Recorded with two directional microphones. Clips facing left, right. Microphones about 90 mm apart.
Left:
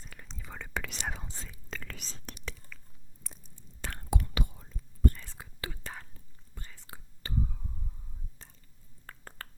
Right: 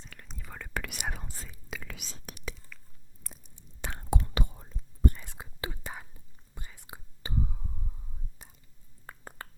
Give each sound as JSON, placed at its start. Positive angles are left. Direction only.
{"t": 0.0, "sound": "whispering", "side_deg": 5}
{"t": 2.7, "sound": "chewing", "side_deg": 0}
{"t": 3.4, "sound": "whispering", "side_deg": -15}
{"t": 5.0, "sound": "whispering", "side_deg": -20}
{"t": 9.0, "sound": "a sound", "side_deg": -15}